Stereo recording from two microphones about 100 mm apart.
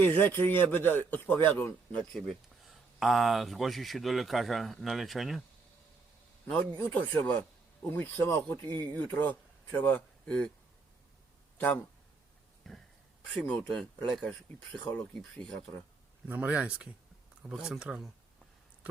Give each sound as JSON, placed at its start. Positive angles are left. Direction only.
{"t": 0.0, "sound": "speech", "side_deg": 20}
{"t": 2.1, "sound": "speech", "side_deg": 0}
{"t": 6.5, "sound": "speech", "side_deg": 15}
{"t": 11.5, "sound": "speech", "side_deg": 20}
{"t": 12.7, "sound": "a sound", "side_deg": 0}
{"t": 13.5, "sound": "speech", "side_deg": 10}
{"t": 16.2, "sound": "speech", "side_deg": -20}